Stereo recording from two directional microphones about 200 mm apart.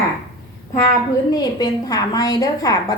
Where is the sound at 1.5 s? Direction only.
20° left (ahead or behind).